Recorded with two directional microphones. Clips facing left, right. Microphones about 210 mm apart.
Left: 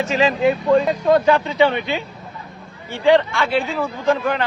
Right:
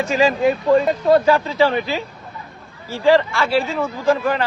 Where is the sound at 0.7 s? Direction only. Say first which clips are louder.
Right 2 dB; 5° right (ahead or behind).